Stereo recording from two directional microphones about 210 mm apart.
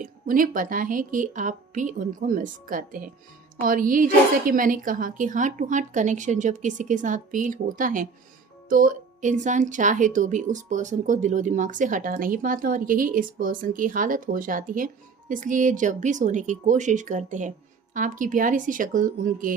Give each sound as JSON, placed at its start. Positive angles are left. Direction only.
{"t": 0.0, "sound": "speech", "side_deg": -40}